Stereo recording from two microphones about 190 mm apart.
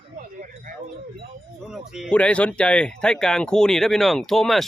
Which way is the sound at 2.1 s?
5° left (ahead or behind).